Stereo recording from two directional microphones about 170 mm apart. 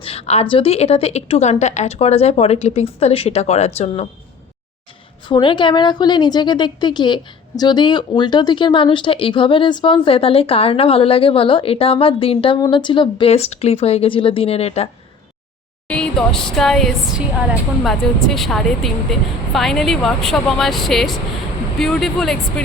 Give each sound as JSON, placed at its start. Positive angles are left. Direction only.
{"t": 0.0, "sound": "a woman's voice", "side_deg": 35}
{"t": 5.3, "sound": "a woman's voice", "side_deg": 30}
{"t": 15.9, "sound": "a woman's voice", "side_deg": 5}